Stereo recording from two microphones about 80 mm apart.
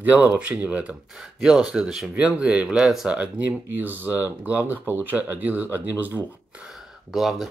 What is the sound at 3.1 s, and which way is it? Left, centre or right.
Speech, centre.